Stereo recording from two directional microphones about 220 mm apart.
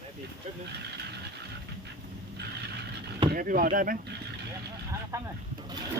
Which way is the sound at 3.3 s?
40° right (ahead or behind).